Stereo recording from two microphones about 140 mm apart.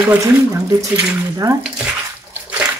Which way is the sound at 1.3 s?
25° right (ahead or behind).